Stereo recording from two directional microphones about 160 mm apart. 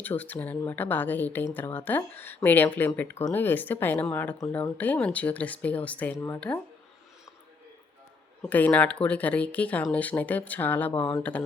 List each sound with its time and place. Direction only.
0.0 s speech: 10° left (ahead or behind)
8.4 s speech: 10° left (ahead or behind)